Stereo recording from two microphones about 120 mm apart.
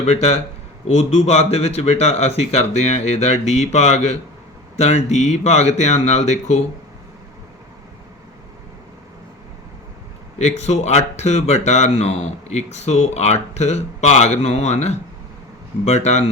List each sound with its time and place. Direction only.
0.0 s speech: 60° left (ahead or behind)
10.3 s speech: 70° left (ahead or behind)